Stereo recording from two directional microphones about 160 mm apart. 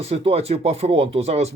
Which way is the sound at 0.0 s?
40° right (ahead or behind).